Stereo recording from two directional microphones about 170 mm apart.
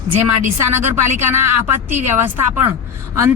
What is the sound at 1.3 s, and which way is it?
A woman's voice, 15° right (ahead or behind).